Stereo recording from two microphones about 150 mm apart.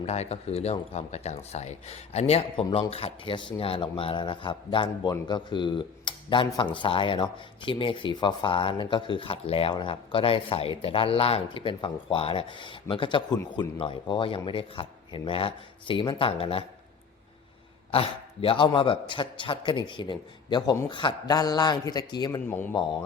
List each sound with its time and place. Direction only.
0.0 s speech: 45° left (ahead or behind)
2.6 s speech: 30° left (ahead or behind)
17.9 s speech: 40° left (ahead or behind)
22.4 s a man's voice: 15° left (ahead or behind)
22.7 s speech: 30° left (ahead or behind)